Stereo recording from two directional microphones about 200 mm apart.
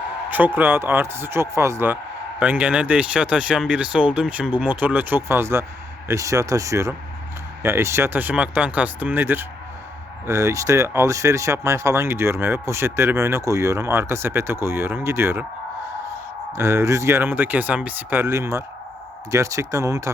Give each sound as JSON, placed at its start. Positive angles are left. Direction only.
{"t": 0.3, "sound": "speech", "side_deg": -10}
{"t": 16.5, "sound": "speech", "side_deg": -15}